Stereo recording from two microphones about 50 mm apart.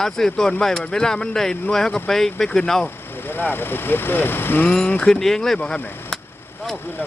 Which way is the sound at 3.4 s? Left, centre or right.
Left.